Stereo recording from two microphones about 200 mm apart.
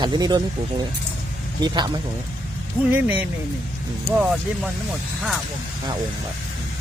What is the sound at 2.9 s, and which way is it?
Speech, 5° right (ahead or behind).